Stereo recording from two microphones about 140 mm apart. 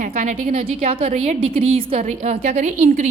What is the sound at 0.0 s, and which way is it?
Speech, 60° right (ahead or behind).